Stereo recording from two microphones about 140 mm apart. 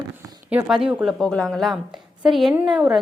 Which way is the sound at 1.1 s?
5° left (ahead or behind).